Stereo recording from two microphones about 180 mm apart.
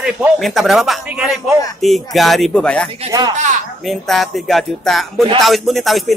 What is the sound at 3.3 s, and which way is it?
Speech, 40° right (ahead or behind).